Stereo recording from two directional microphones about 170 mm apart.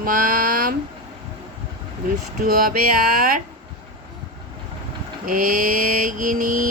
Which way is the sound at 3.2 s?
60° right (ahead or behind).